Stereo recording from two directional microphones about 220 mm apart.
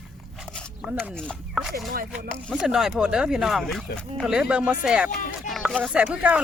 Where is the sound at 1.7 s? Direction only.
40° right (ahead or behind).